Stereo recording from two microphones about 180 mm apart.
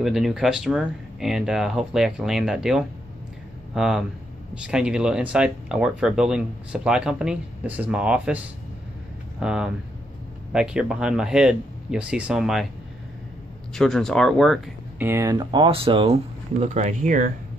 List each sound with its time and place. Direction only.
0.0 s speech: centre (ahead or behind)
13.7 s speech: centre (ahead or behind)
15.0 s speech: 15° right (ahead or behind); by 17.3 s 45° right (ahead or behind)